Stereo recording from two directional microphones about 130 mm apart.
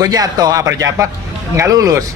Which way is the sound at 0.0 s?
30° right (ahead or behind).